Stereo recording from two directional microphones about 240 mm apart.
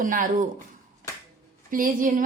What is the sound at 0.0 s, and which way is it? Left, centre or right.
Speech, right.